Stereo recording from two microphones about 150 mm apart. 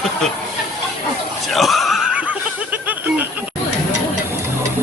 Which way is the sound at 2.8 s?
10° right (ahead or behind).